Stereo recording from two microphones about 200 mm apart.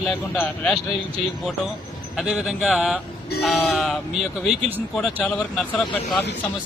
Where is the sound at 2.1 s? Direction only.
Centre (ahead or behind).